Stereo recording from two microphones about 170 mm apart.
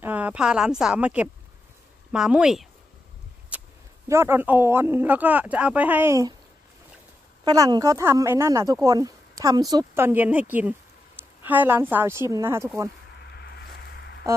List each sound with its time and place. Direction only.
0.0 s speech: 10° right (ahead or behind)
3.5 s a sound: 10° right (ahead or behind)
4.1 s speech: 15° right (ahead or behind)
7.4 s speech: 20° right (ahead or behind)
13.3 s boat: 70° left (ahead or behind)